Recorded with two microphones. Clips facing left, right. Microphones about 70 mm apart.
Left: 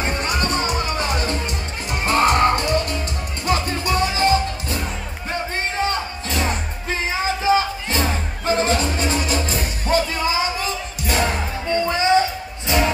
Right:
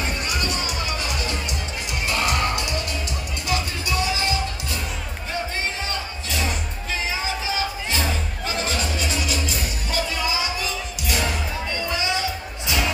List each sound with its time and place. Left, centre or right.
0.0 s music: left